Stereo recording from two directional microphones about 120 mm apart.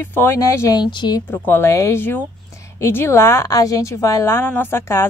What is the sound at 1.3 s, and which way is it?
A woman's voice, 20° left (ahead or behind).